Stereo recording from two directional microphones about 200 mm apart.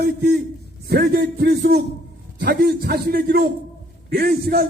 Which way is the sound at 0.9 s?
50° right (ahead or behind).